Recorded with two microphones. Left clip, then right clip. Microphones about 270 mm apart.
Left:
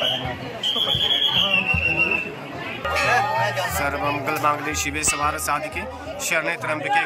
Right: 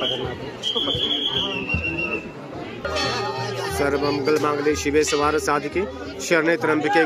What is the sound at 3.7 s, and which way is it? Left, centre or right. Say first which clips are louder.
Speech: right 1 dB; centre.